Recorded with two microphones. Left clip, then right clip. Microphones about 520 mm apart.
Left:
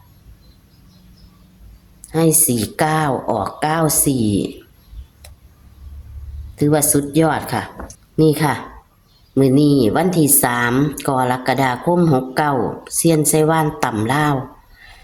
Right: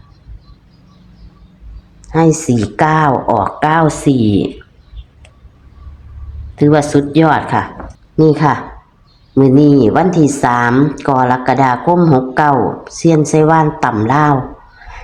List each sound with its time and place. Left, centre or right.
2.0 s a woman's voice: left
6.6 s a woman's voice: left